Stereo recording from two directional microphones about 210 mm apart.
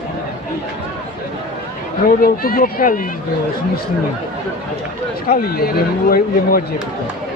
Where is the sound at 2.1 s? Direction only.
45° left (ahead or behind).